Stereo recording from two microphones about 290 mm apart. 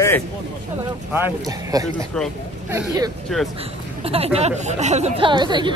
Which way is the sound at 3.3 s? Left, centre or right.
Centre.